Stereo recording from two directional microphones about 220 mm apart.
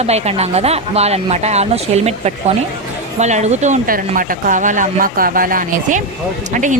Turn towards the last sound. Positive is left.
turn(degrees=-35)  # may be behind; listen again after turning